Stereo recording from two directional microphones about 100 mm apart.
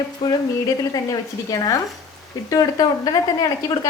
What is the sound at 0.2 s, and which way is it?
Speech, 45° left (ahead or behind).